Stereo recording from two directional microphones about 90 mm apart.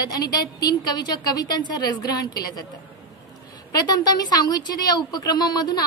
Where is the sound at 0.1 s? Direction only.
45° left (ahead or behind).